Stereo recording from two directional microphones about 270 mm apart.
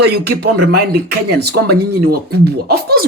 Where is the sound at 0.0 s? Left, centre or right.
Right.